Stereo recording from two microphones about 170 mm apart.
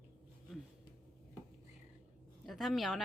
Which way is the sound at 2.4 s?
Centre (ahead or behind).